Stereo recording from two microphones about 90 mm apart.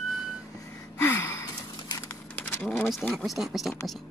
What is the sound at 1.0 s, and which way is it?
Gasp, 30° left (ahead or behind).